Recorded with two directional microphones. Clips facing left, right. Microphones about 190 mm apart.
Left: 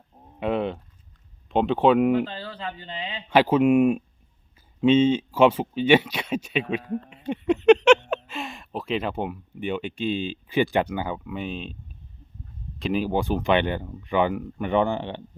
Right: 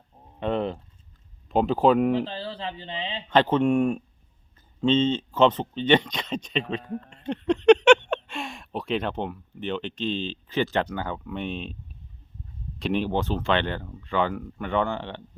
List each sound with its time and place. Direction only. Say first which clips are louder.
0.3 s speech: left 1 dB; 5° left (ahead or behind)
2.2 s speech: right 1 dB; 30° right (ahead or behind)
3.2 s speech: left 2 dB; 10° left (ahead or behind)
12.8 s speech: left 1 dB; 5° left (ahead or behind)